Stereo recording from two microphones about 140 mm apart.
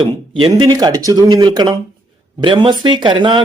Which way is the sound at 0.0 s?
40° right (ahead or behind).